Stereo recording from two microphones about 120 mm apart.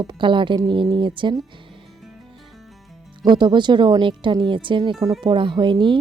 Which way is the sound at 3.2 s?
40° right (ahead or behind).